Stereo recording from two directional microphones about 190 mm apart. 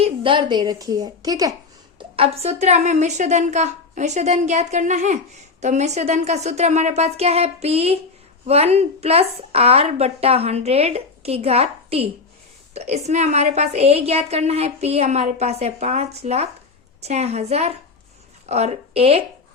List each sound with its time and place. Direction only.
0.0 s a woman's voice: 25° right (ahead or behind)
2.0 s a woman's voice: 30° right (ahead or behind)